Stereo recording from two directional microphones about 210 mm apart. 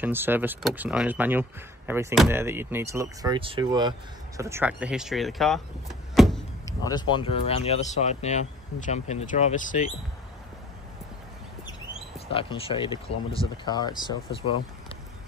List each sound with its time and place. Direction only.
0.0 s speech: 10° right (ahead or behind)
6.1 s vehicle: centre (ahead or behind)
6.8 s speech: 20° left (ahead or behind)
12.3 s speech: 25° left (ahead or behind)